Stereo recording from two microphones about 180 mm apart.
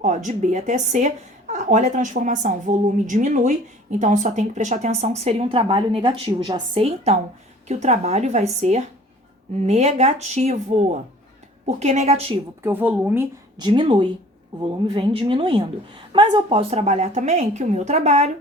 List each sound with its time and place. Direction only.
0.0 s a woman's voice: 45° right (ahead or behind)
11.8 s speech: 40° right (ahead or behind)
12.6 s speech: 10° right (ahead or behind)
13.6 s speech: 25° right (ahead or behind)